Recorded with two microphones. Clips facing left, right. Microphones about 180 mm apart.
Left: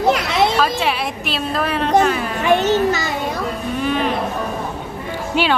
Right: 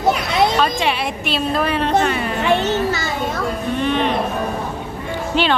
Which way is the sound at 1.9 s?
5° left (ahead or behind).